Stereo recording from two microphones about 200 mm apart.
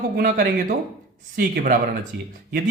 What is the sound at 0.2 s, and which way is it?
Speech, 45° right (ahead or behind).